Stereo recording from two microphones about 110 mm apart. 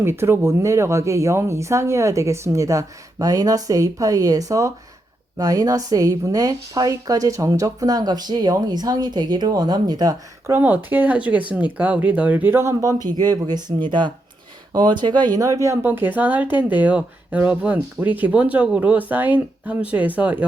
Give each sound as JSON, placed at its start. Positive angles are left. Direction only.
{"t": 0.0, "sound": "a woman's voice", "side_deg": -20}
{"t": 10.4, "sound": "a woman's voice", "side_deg": -20}
{"t": 15.8, "sound": "speech", "side_deg": -15}